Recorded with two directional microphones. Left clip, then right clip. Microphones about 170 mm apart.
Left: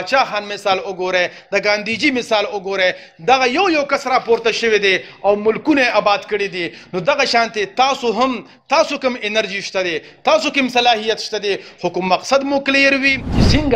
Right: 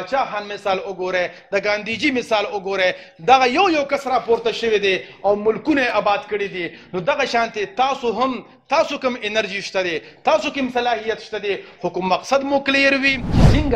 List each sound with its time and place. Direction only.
0.0 s a man's voice: 45° left (ahead or behind); by 5.3 s 10° left (ahead or behind)
5.3 s a man's voice: 20° left (ahead or behind); by 8.4 s 40° left (ahead or behind)
8.6 s a man's voice: 25° left (ahead or behind)
10.3 s a man's voice: 30° left (ahead or behind)
10.7 s a man's voice: 45° left (ahead or behind)
11.8 s a man's voice: 25° left (ahead or behind); by 13.2 s 5° left (ahead or behind)